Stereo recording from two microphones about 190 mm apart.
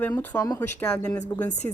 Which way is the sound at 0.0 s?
10° left (ahead or behind).